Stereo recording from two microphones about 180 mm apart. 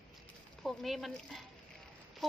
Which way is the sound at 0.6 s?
Centre (ahead or behind).